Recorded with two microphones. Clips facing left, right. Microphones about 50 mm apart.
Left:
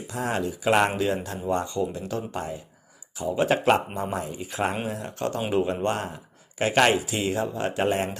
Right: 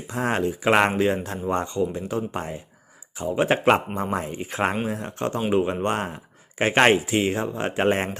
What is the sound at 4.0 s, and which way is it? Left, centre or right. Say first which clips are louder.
Speech: right 3 dB; right.